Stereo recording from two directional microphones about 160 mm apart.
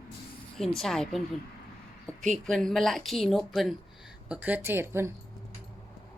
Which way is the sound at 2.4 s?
5° left (ahead or behind).